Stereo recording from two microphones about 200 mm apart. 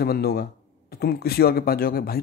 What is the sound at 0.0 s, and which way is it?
Speech, 50° left (ahead or behind).